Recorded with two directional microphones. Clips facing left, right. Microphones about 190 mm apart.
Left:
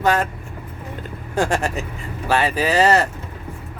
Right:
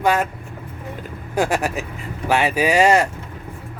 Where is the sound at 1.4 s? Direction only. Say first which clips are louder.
Even; 10° right (ahead or behind).